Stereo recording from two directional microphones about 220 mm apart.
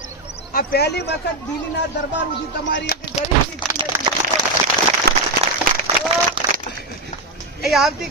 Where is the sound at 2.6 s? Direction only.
50° left (ahead or behind).